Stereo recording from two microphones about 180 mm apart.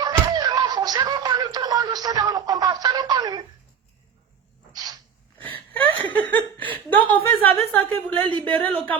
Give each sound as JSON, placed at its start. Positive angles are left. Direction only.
{"t": 0.0, "sound": "a sound", "side_deg": -20}
{"t": 5.4, "sound": "whimper", "side_deg": 10}
{"t": 6.1, "sound": "speech", "side_deg": 10}